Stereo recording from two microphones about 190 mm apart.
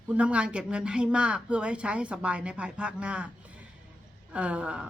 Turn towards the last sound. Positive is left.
turn(degrees=-5)  # may be behind; listen again after turning